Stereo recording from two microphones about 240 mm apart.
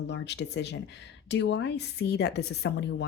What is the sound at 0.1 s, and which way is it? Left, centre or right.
A woman's voice, left.